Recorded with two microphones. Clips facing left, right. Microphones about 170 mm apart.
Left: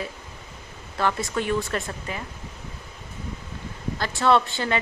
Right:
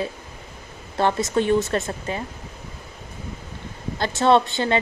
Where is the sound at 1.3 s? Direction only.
25° right (ahead or behind).